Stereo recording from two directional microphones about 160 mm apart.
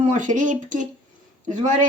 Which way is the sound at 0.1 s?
55° right (ahead or behind).